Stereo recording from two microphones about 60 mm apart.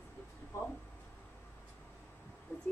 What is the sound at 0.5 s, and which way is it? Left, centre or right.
Speech, left.